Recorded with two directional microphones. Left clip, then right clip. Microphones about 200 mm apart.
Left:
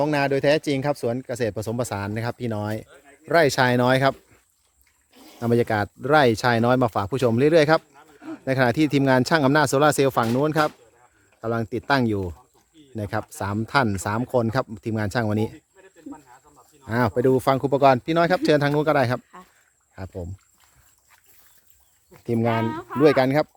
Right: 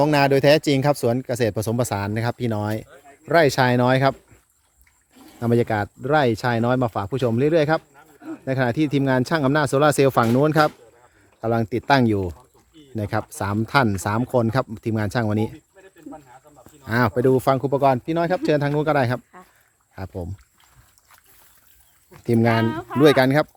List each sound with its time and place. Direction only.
0.0 s speech: 20° right (ahead or behind); by 4.1 s 5° left (ahead or behind)
5.4 s speech: 5° left (ahead or behind)
16.8 s speech: 10° left (ahead or behind)
20.0 s speech: 5° right (ahead or behind)
22.1 s speech: 10° right (ahead or behind)
22.6 s speech: 35° right (ahead or behind)
23.0 s speech: centre (ahead or behind)